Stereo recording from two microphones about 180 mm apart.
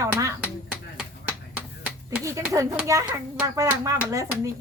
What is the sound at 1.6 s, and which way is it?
Finger snapping, 15° right (ahead or behind).